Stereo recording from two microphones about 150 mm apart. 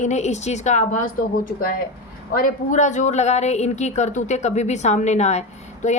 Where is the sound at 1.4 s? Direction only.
70° left (ahead or behind).